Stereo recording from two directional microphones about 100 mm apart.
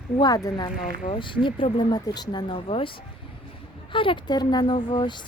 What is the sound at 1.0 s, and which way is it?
Speech, 55° left (ahead or behind).